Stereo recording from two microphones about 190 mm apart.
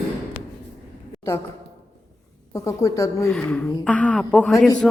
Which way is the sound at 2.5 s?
15° left (ahead or behind).